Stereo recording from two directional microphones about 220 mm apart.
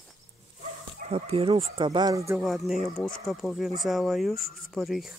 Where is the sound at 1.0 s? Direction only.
25° right (ahead or behind).